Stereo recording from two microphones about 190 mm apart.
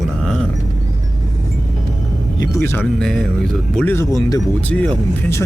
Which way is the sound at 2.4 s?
15° left (ahead or behind).